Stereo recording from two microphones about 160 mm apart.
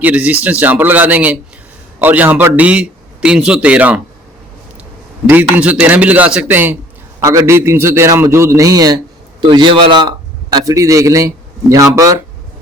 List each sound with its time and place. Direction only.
0.0 s a man's voice: 10° right (ahead or behind)
5.2 s a man's voice: 10° right (ahead or behind)